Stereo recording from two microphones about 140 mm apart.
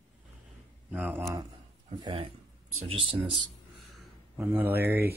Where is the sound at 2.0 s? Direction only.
35° right (ahead or behind).